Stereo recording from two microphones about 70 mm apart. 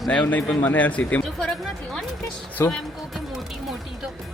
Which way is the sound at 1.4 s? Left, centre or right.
Centre.